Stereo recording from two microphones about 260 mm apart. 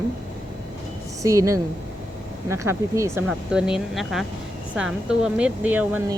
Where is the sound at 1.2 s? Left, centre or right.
Centre.